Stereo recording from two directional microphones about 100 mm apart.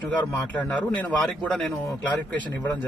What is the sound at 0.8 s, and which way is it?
Speech, 15° left (ahead or behind).